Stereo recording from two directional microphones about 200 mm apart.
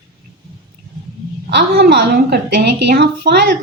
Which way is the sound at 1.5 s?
55° right (ahead or behind).